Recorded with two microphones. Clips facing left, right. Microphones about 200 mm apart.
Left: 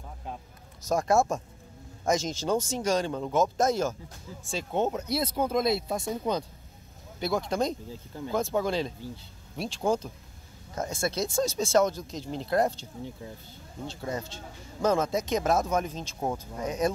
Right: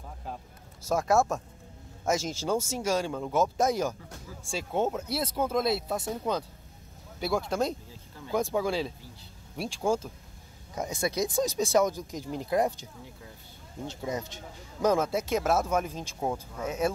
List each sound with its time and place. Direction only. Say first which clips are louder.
0.8 s speech: left 1 dB; 5° right (ahead or behind)
13.0 s speech: left 9 dB; 25° left (ahead or behind)
13.8 s speech: even; 15° right (ahead or behind)